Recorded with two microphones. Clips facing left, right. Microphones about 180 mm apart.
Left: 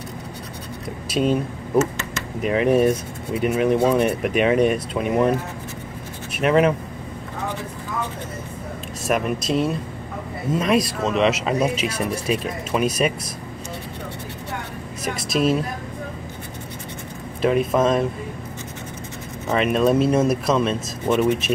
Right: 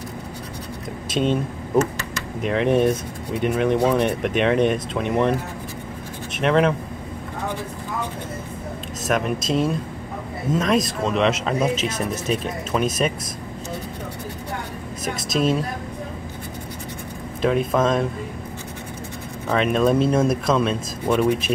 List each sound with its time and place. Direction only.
1.1 s speech: 5° left (ahead or behind)
6.3 s speech: 5° left (ahead or behind)
9.0 s speech: 5° left (ahead or behind)
15.0 s speech: 5° left (ahead or behind)
17.4 s speech: 5° left (ahead or behind)
19.5 s speech: 5° left (ahead or behind)